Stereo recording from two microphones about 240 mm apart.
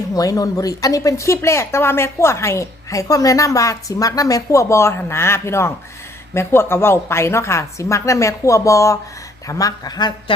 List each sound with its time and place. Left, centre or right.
0.1 s speech: centre